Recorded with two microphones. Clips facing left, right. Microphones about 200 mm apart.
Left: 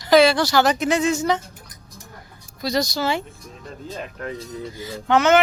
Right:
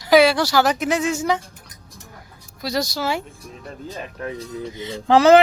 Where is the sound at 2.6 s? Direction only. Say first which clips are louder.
Left 1 dB; 5° right (ahead or behind).